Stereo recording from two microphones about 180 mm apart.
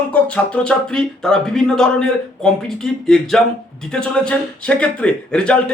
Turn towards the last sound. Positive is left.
turn(degrees=5)  # may be behind; listen again after turning